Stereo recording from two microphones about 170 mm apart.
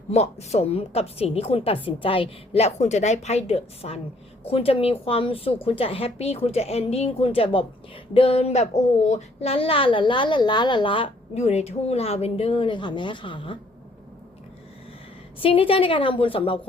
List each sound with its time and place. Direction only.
0.1 s a woman's voice: 40° left (ahead or behind)
15.4 s a woman's voice: 30° left (ahead or behind)